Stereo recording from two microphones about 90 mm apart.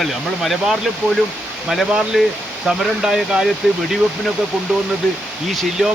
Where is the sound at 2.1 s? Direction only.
5° right (ahead or behind).